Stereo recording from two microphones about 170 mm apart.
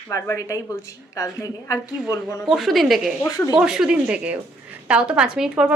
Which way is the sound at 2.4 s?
Centre (ahead or behind).